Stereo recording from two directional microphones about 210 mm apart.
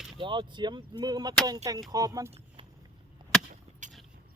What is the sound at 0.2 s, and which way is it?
Speech, 20° right (ahead or behind).